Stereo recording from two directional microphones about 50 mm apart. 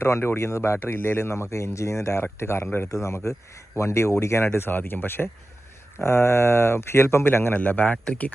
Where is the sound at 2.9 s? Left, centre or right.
Left.